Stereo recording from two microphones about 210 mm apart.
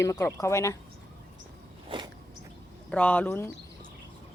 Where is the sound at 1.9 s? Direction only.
20° right (ahead or behind).